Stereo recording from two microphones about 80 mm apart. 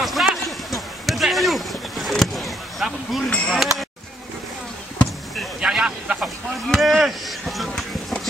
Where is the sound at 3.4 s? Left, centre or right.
Centre.